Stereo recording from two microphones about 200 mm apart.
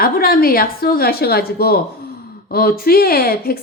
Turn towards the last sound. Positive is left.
turn(degrees=50)  # may be behind; listen again after turning